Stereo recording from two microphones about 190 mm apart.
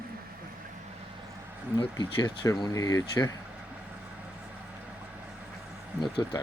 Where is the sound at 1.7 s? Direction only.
25° left (ahead or behind).